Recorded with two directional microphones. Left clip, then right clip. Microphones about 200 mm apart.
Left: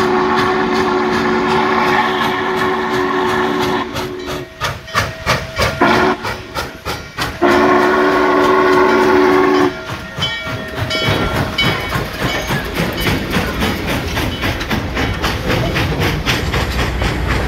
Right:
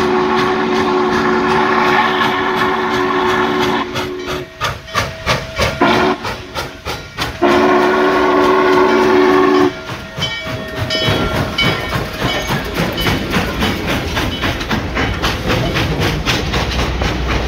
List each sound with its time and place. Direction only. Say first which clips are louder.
0.0 s vehicle: even; centre (ahead or behind)
4.6 s hiss: left 1 dB; centre (ahead or behind)
7.2 s train: even; centre (ahead or behind)
11.3 s train: even; 45° right (ahead or behind); by 17.4 s 25° right (ahead or behind)